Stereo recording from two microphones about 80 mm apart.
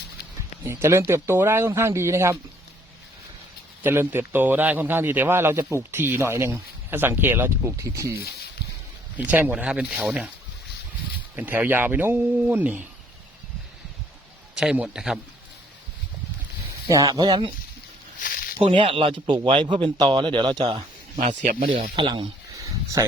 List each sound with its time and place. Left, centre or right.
0.6 s speech: right
3.8 s speech: right
7.8 s speech: right
9.1 s speech: right
9.9 s speech: centre
11.3 s speech: right
14.5 s a man's voice: centre
16.9 s speech: right
17.2 s speech: right
18.6 s speech: right
19.5 s speech: right
22.6 s a sound: right